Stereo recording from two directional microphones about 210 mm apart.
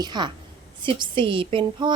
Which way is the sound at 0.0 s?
20° right (ahead or behind).